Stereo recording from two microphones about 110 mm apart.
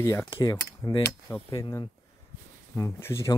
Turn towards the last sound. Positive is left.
turn(degrees=25)  # may be behind; listen again after turning